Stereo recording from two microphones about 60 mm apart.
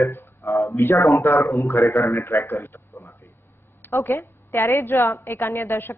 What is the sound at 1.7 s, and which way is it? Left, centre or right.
A woman's voice, left.